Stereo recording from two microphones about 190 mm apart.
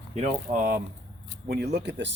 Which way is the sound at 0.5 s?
45° right (ahead or behind).